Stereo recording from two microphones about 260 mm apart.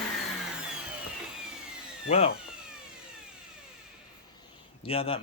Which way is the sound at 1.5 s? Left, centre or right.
Centre.